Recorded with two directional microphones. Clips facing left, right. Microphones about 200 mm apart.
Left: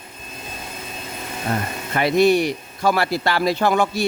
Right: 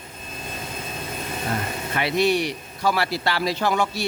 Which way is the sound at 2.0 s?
45° left (ahead or behind).